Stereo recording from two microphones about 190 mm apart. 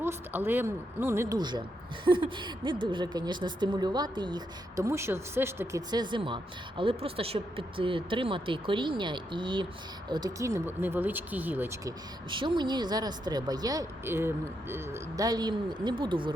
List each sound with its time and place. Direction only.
0.0 s speech: 10° right (ahead or behind)
12.3 s speech: 25° right (ahead or behind)